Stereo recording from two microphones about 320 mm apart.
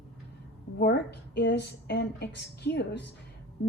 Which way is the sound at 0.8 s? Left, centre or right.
Left.